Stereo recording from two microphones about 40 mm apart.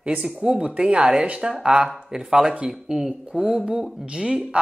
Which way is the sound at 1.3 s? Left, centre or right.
Right.